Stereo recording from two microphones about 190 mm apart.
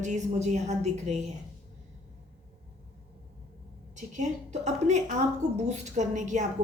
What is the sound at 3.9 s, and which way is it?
A woman's voice, 40° right (ahead or behind).